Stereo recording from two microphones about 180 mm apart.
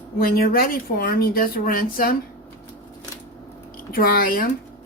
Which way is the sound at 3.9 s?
55° left (ahead or behind).